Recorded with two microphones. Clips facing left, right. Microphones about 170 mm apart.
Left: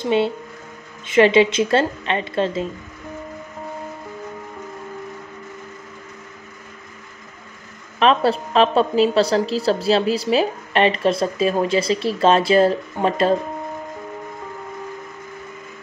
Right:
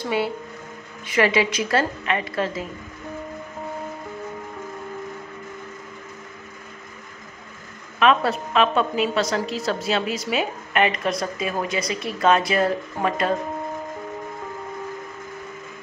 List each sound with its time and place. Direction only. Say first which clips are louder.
0.0 s a woman's voice: left 5 dB; 25° left (ahead or behind)
8.0 s a woman's voice: left 3 dB; 30° left (ahead or behind)